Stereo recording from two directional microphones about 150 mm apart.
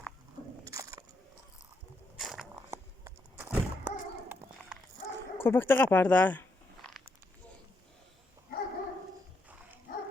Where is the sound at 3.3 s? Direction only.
10° right (ahead or behind).